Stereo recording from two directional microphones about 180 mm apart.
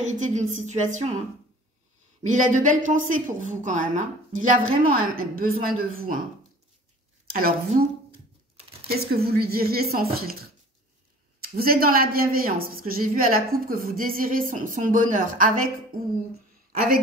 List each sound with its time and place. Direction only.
0.0 s a woman's voice: 40° right (ahead or behind)
2.2 s a woman's voice: 45° right (ahead or behind)
7.2 s a woman's voice: 55° right (ahead or behind)
8.1 s a sound: 30° right (ahead or behind)
8.8 s a woman's voice: 60° right (ahead or behind)